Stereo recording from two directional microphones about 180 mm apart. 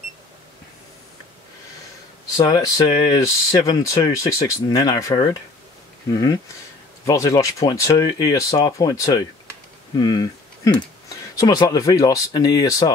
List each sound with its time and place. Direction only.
2.3 s speech: 20° left (ahead or behind)